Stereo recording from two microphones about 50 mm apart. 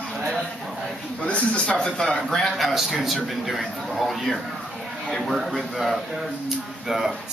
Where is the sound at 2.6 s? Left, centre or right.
Centre.